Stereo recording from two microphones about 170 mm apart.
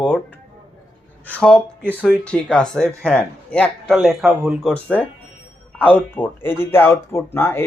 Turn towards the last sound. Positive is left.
turn(degrees=15)  # may be behind; listen again after turning